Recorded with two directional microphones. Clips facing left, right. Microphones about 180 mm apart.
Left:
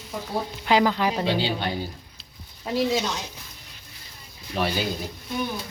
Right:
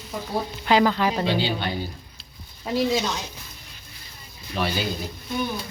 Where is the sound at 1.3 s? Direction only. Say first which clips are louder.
Even; 35° left (ahead or behind).